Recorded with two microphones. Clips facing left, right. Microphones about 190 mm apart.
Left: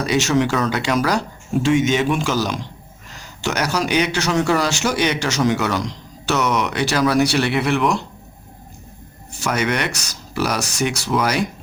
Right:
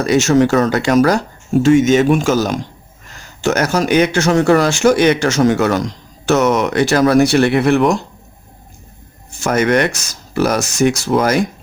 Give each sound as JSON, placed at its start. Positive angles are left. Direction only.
{"t": 0.0, "sound": "speech", "side_deg": -45}
{"t": 9.4, "sound": "speech", "side_deg": -50}